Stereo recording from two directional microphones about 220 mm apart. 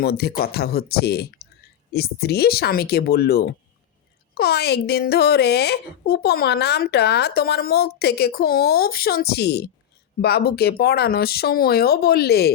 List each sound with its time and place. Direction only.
0.0 s a woman's voice: 45° left (ahead or behind)